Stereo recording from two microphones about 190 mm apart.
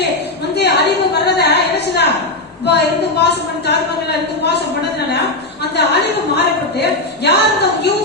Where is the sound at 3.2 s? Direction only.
60° left (ahead or behind).